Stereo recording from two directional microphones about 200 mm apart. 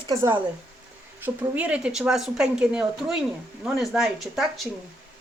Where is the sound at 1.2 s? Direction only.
5° right (ahead or behind).